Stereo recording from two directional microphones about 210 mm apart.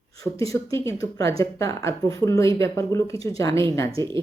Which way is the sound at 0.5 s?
15° left (ahead or behind).